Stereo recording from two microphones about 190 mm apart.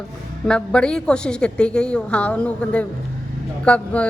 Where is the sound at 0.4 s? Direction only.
5° left (ahead or behind).